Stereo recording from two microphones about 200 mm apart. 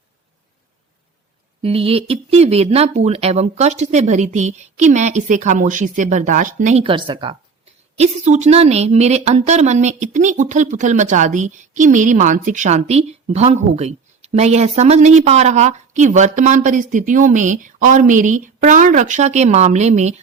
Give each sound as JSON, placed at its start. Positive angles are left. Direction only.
{"t": 1.6, "sound": "a woman's voice", "side_deg": -30}